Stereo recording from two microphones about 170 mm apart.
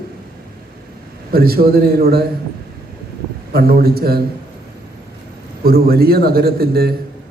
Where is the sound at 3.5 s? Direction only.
65° right (ahead or behind).